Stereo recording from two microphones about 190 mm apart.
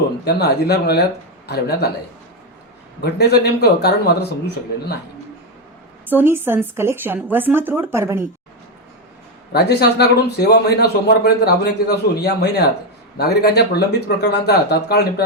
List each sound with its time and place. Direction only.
0.3 s speech: 60° left (ahead or behind)
3.0 s speech: 60° left (ahead or behind)
6.1 s a woman's voice: 10° right (ahead or behind)
9.5 s speech: 60° left (ahead or behind)